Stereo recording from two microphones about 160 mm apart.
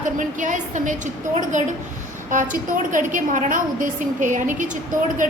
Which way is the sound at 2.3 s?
55° right (ahead or behind).